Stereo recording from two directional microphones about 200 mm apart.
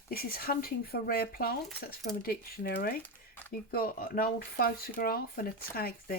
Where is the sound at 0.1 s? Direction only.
50° left (ahead or behind).